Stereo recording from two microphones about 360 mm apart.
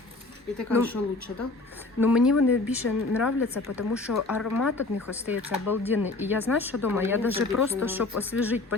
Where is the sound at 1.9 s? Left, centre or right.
Centre.